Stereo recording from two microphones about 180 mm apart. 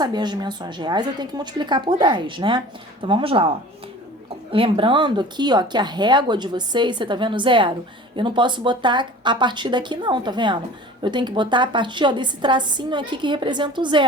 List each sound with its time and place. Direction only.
0.0 s speech: 25° right (ahead or behind)
4.5 s speech: 30° right (ahead or behind)